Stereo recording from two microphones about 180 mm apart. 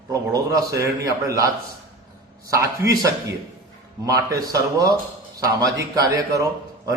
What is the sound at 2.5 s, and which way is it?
A man's voice, 15° right (ahead or behind).